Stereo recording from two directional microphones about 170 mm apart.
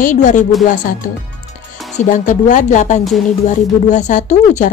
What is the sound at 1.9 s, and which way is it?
Speech, 45° left (ahead or behind).